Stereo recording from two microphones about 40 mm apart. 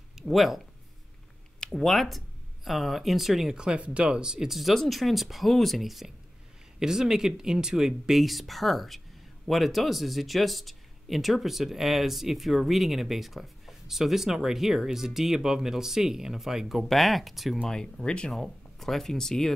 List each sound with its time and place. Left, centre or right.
0.3 s speech: centre
1.7 s speech: centre
3.5 s speech: right
4.5 s speech: centre
16.8 s speech: centre
17.6 s speech: centre
18.3 s speech: centre